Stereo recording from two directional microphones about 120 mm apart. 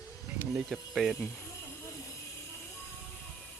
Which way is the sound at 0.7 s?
Centre (ahead or behind).